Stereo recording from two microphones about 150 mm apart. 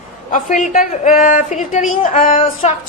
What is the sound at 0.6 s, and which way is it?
Speech, 60° left (ahead or behind).